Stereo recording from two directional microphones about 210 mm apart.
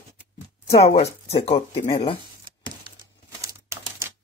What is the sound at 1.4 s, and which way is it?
Speech, 25° left (ahead or behind).